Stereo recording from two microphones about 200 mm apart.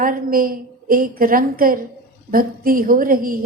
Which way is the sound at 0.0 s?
45° right (ahead or behind).